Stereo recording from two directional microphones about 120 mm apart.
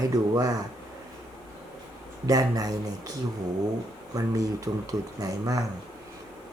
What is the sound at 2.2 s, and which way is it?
Speech, 30° right (ahead or behind).